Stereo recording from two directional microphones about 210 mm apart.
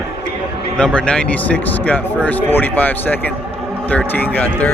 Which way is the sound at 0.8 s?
5° left (ahead or behind).